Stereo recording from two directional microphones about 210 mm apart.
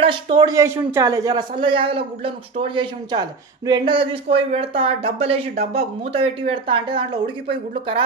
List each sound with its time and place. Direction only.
0.0 s speech: 20° right (ahead or behind)
5.5 s speech: 45° right (ahead or behind)
5.8 s speech: 30° right (ahead or behind)